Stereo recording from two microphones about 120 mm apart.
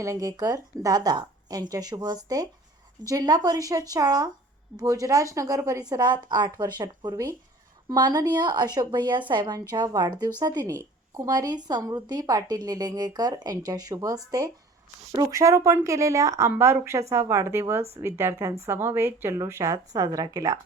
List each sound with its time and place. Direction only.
0.0 s a woman's voice: 25° right (ahead or behind)